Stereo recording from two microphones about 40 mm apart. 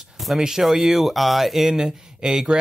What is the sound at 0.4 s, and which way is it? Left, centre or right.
Speech, centre.